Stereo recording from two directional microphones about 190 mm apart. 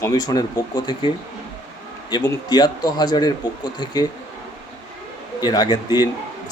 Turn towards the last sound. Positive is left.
turn(degrees=20)  # may be behind; listen again after turning